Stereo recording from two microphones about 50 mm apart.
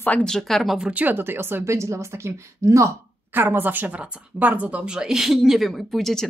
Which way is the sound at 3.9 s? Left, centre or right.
Right.